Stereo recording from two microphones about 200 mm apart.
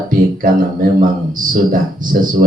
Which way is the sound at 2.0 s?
45° right (ahead or behind).